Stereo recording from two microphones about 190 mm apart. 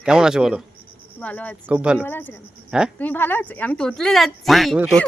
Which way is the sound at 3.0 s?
10° left (ahead or behind).